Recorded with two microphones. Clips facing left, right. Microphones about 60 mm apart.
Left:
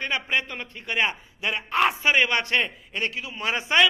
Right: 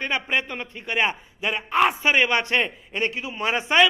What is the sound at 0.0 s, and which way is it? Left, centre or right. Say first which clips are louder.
A man's voice: right 1 dB; centre.